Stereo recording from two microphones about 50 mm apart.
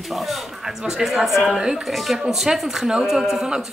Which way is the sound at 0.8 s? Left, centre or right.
Centre.